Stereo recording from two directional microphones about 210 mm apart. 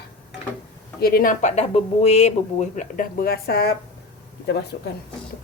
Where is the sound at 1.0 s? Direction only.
45° left (ahead or behind).